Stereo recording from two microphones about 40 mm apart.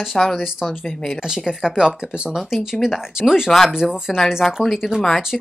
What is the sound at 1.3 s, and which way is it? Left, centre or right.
Speech, centre.